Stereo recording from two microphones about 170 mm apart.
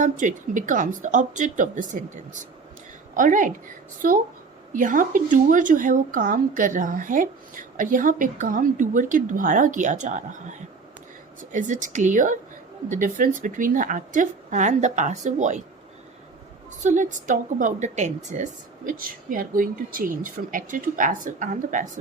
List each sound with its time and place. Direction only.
0.0 s a woman's voice: 50° right (ahead or behind)
16.8 s a woman's voice: 45° right (ahead or behind)
18.9 s a woman's voice: 55° right (ahead or behind)